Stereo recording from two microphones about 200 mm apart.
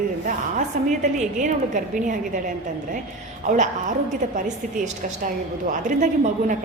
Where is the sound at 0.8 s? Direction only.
40° right (ahead or behind).